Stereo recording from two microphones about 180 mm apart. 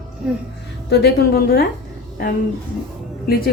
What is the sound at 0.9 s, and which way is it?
Speech, 60° left (ahead or behind).